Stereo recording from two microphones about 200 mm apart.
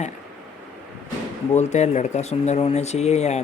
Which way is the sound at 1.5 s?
35° left (ahead or behind).